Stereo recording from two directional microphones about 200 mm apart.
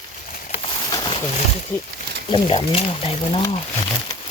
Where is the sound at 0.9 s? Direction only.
20° left (ahead or behind).